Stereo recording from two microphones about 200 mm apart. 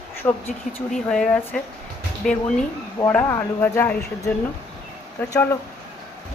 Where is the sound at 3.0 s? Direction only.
10° left (ahead or behind).